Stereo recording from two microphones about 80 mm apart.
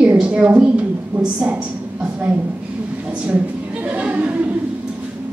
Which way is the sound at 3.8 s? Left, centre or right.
Centre.